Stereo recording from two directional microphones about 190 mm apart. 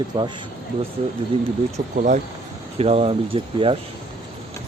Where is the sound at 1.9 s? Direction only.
40° right (ahead or behind).